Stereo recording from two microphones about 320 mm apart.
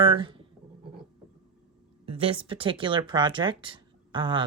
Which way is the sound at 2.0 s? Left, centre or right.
Centre.